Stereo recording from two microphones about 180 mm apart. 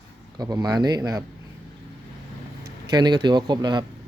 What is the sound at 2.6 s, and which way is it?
Speech, 20° right (ahead or behind).